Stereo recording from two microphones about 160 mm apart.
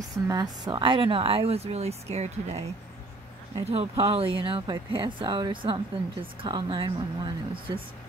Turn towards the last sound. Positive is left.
turn(degrees=-30)  # may be behind; listen again after turning